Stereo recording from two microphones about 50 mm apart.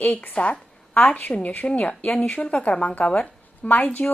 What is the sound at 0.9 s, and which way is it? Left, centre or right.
A woman's voice, left.